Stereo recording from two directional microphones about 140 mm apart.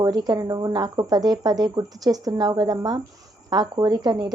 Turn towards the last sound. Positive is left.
turn(degrees=-30)  # may be behind; listen again after turning